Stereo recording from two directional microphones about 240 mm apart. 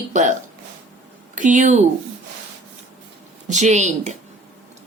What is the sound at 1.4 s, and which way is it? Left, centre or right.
Speech, right.